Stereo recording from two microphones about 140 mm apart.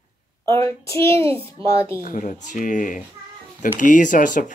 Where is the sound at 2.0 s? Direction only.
70° left (ahead or behind).